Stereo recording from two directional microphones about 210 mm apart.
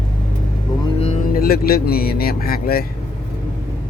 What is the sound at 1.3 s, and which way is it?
Speech, 45° left (ahead or behind).